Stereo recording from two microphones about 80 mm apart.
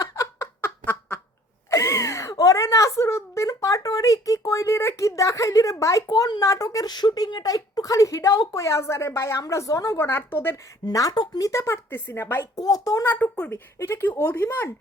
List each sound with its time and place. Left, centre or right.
0.0 s a sound: left
0.6 s a sound: left
1.7 s a sound: left
2.3 s speech: left
6.1 s a woman's voice: left
7.5 s a woman's voice: left
10.0 s speech: left
10.8 s a woman's voice: left
11.4 s speech: left
12.5 s a woman's voice: left
13.1 s speech: left
13.7 s a woman's voice: left